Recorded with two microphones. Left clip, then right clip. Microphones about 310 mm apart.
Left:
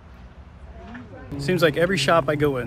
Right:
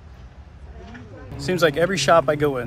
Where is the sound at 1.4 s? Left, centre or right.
Centre.